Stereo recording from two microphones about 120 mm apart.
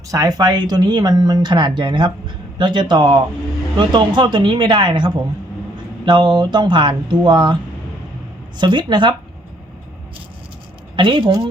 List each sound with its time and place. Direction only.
0.1 s speech: 30° right (ahead or behind)
8.5 s speech: 40° right (ahead or behind)
10.9 s speech: 45° right (ahead or behind)